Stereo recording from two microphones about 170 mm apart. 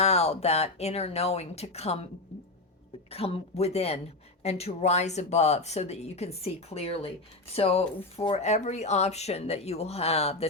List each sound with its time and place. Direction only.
0.0 s speech: 40° left (ahead or behind)
3.1 s speech: 35° left (ahead or behind)